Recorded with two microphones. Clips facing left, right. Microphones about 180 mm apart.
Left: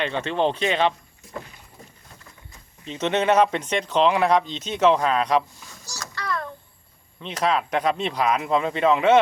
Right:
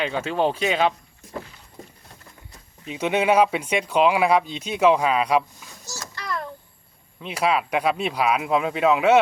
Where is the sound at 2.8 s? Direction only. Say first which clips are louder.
Even; 10° right (ahead or behind).